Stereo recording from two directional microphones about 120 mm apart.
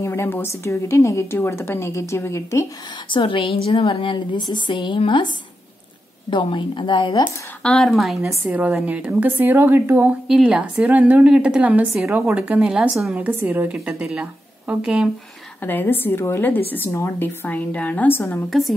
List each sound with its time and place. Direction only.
0.0 s a woman's voice: 20° left (ahead or behind)
3.1 s a woman's voice: 45° left (ahead or behind)
6.3 s a woman's voice: 40° left (ahead or behind)
7.6 s speech: 5° left (ahead or behind)
8.2 s a woman's voice: 20° right (ahead or behind)
10.2 s a woman's voice: 5° right (ahead or behind)
13.2 s a woman's voice: 15° right (ahead or behind)
15.6 s a woman's voice: 15° left (ahead or behind)
18.5 s speech: centre (ahead or behind)